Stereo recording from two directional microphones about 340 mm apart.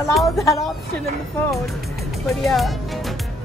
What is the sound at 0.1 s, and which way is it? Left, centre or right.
Speech, centre.